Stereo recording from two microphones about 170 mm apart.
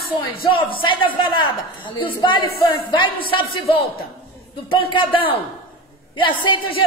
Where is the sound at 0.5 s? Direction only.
30° left (ahead or behind).